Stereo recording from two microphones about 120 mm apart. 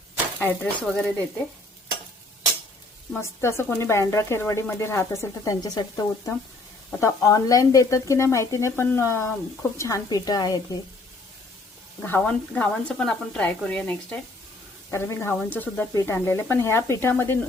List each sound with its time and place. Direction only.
0.3 s speech: 15° left (ahead or behind)
3.2 s a woman's voice: 20° left (ahead or behind)
12.0 s speech: 15° left (ahead or behind)
14.8 s speech: 20° left (ahead or behind)